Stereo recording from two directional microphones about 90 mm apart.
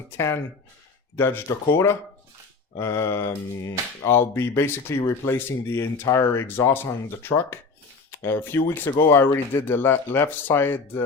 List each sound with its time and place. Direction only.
1.1 s speech: 25° left (ahead or behind)